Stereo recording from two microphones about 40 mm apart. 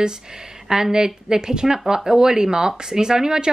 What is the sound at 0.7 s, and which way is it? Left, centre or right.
A woman's voice, centre.